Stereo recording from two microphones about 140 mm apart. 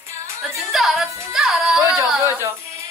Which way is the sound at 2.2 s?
20° right (ahead or behind).